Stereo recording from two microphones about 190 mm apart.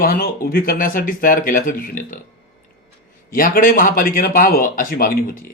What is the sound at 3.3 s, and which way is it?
Speech, 45° left (ahead or behind).